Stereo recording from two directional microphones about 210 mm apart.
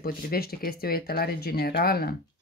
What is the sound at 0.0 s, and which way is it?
Speech, 45° left (ahead or behind).